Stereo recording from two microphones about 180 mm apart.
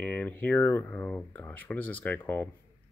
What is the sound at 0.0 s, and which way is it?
Speech, 10° left (ahead or behind).